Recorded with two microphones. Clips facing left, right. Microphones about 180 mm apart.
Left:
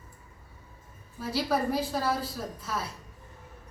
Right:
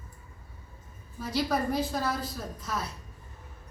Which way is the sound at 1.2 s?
5° left (ahead or behind).